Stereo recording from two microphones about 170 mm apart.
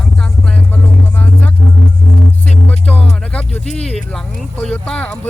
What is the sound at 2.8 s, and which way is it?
Music, 35° left (ahead or behind).